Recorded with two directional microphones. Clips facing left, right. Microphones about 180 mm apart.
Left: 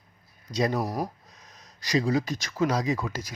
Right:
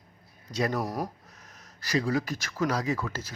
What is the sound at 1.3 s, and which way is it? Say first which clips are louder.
A man's voice: even; 15° left (ahead or behind).